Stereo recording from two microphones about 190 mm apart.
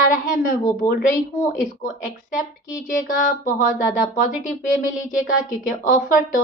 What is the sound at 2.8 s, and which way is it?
Speech, 45° left (ahead or behind).